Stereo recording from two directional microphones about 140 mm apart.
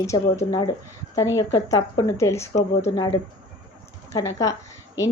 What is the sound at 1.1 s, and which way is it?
Speech, 25° left (ahead or behind).